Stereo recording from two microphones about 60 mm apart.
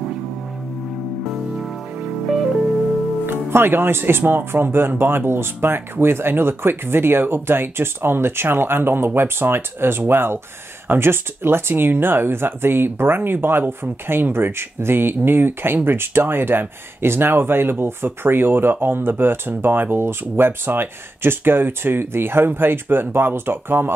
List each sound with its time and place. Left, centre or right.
3.3 s speech: right